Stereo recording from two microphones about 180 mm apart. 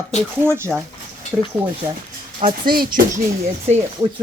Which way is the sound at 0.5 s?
15° right (ahead or behind).